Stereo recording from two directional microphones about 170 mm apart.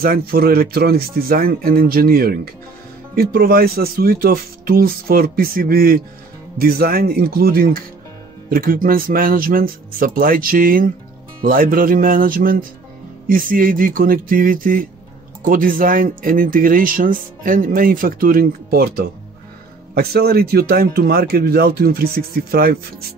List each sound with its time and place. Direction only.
0.0 s speech: 60° right (ahead or behind)